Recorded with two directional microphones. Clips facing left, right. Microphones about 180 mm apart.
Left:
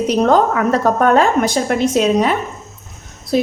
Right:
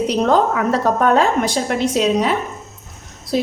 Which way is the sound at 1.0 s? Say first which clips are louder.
Left 2 dB; 50° left (ahead or behind).